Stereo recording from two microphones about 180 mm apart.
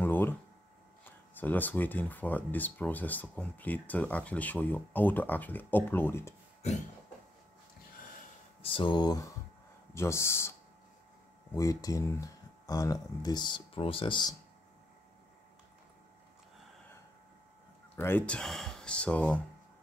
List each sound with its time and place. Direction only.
0.0 s a sound: 10° left (ahead or behind)
1.3 s speech: 10° left (ahead or behind)
8.6 s speech: 30° left (ahead or behind)
11.5 s speech: 20° left (ahead or behind)
17.9 s speech: 10° left (ahead or behind)